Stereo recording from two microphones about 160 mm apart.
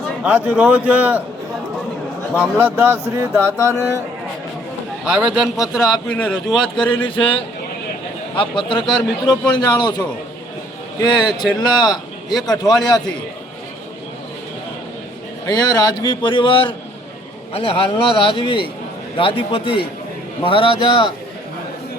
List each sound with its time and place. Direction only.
0.2 s a man's voice: 10° right (ahead or behind)
2.4 s a man's voice: 10° right (ahead or behind)
5.0 s speech: 5° right (ahead or behind)
6.8 s a man's voice: 30° left (ahead or behind)
11.0 s speech: 30° left (ahead or behind)
15.4 s a man's voice: 25° left (ahead or behind)